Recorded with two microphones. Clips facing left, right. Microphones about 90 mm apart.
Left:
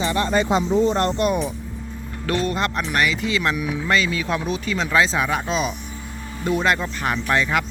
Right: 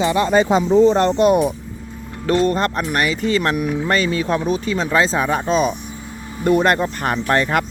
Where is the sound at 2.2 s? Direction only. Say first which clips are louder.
Right 6 dB; 30° right (ahead or behind).